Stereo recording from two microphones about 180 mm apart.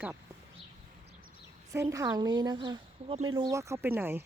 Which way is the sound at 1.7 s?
15° right (ahead or behind).